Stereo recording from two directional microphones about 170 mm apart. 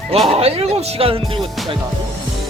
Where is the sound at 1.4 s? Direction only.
Centre (ahead or behind).